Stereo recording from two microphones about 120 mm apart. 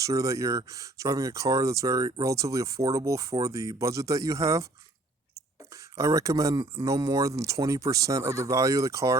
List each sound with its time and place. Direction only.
0.0 s speech: 25° right (ahead or behind)
5.7 s speech: 25° right (ahead or behind)